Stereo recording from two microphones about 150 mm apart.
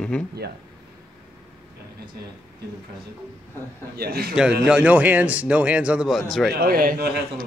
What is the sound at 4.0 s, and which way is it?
Speech, 90° right.